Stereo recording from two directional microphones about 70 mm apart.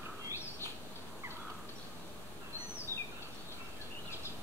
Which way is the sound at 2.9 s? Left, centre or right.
Left.